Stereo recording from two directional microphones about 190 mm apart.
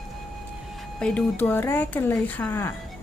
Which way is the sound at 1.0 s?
5° left (ahead or behind).